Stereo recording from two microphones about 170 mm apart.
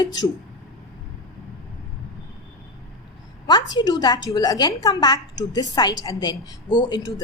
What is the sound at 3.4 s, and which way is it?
A woman's voice, 25° left (ahead or behind).